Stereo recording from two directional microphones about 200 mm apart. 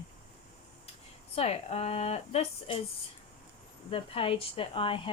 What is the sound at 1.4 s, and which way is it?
Speech, 30° left (ahead or behind).